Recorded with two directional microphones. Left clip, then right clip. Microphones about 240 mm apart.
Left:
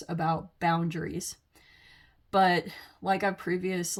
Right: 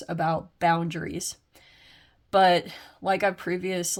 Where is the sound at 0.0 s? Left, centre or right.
Right.